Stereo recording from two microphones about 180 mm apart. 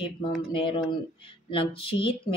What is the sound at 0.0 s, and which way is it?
Speech, 30° left (ahead or behind).